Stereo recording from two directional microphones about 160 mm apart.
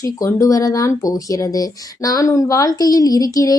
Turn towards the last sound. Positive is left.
turn(degrees=20)  # may be behind; listen again after turning